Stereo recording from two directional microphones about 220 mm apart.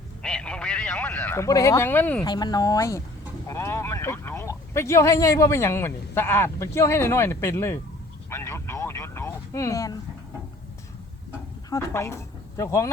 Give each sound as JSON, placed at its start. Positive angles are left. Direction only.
{"t": 0.2, "sound": "radio", "side_deg": 5}
{"t": 2.2, "sound": "speech", "side_deg": 20}
{"t": 8.3, "sound": "vehicle", "side_deg": 10}
{"t": 11.7, "sound": "speech", "side_deg": 15}